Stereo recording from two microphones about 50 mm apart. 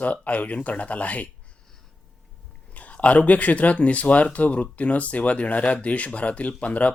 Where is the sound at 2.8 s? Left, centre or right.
Left.